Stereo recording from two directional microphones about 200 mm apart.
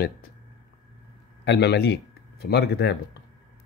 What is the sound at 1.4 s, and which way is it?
Speech, 55° left (ahead or behind).